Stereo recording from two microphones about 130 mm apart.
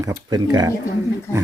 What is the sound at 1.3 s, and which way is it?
Speech, 20° left (ahead or behind).